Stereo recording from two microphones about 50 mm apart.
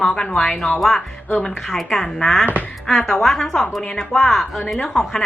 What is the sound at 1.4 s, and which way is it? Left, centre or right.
A woman's voice, centre.